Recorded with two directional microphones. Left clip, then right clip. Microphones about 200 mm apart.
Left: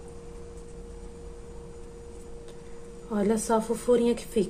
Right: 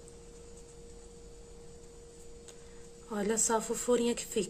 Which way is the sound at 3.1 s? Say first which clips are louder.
Left 5 dB; 15° right (ahead or behind).